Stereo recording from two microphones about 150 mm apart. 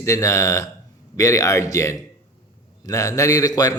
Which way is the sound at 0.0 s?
20° left (ahead or behind).